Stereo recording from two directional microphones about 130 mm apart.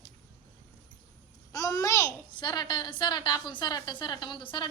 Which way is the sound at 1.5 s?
25° left (ahead or behind).